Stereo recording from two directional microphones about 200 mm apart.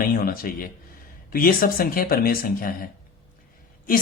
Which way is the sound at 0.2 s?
45° left (ahead or behind).